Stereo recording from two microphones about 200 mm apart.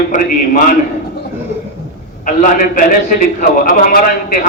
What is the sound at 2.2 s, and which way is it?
A man's voice, 40° left (ahead or behind).